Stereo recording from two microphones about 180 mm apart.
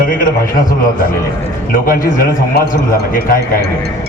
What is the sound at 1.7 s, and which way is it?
A man's voice, 50° left (ahead or behind).